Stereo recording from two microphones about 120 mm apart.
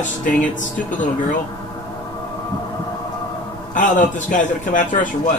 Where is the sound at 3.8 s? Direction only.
90° left.